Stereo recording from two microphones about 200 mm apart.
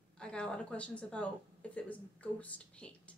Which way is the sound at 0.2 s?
5° left (ahead or behind).